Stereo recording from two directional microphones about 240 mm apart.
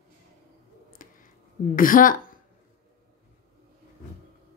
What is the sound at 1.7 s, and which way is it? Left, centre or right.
Speech, left.